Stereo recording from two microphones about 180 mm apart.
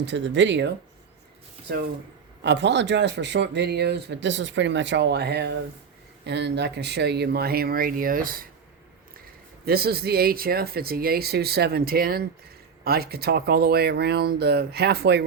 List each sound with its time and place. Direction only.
0.0 s speech: 75° right (ahead or behind)
2.4 s speech: 75° right (ahead or behind); by 8.4 s 50° right (ahead or behind)
9.6 s speech: 60° right (ahead or behind)